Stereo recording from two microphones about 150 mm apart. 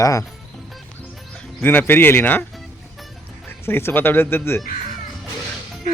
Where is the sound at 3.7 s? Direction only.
15° left (ahead or behind).